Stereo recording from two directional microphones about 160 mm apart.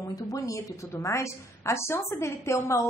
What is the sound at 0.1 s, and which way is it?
A woman's voice, 20° left (ahead or behind).